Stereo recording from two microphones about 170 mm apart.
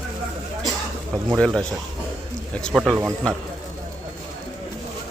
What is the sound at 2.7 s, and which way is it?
Speech, 5° right (ahead or behind).